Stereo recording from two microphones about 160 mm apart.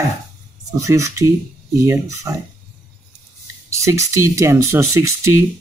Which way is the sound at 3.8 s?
20° right (ahead or behind).